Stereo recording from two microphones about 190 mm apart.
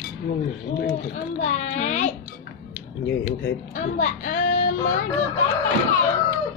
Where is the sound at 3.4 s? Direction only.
40° left (ahead or behind).